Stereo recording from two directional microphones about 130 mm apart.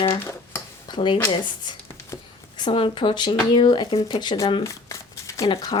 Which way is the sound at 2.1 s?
25° left (ahead or behind).